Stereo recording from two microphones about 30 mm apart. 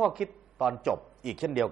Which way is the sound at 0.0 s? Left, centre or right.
Centre.